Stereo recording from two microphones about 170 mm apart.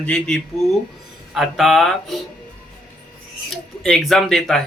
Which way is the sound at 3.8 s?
5° left (ahead or behind).